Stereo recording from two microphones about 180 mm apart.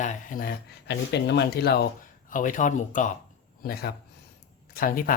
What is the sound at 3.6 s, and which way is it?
Speech, 60° left (ahead or behind).